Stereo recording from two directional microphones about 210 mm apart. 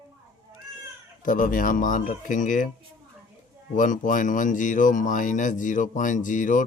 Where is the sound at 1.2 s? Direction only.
40° left (ahead or behind).